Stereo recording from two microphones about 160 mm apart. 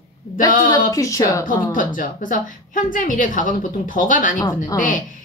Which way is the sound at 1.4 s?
55° left (ahead or behind).